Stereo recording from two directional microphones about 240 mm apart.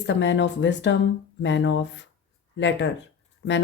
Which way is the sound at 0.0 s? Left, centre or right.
Left.